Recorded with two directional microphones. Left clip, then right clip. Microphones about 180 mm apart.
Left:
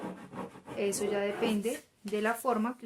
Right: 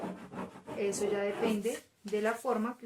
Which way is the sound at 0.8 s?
45° left (ahead or behind).